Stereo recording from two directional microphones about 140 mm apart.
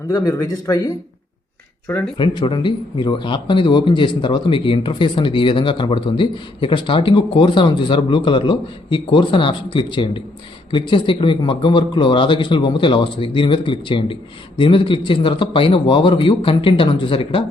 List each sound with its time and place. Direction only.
0.1 s speech: 25° left (ahead or behind)
2.1 s speech: 35° left (ahead or behind)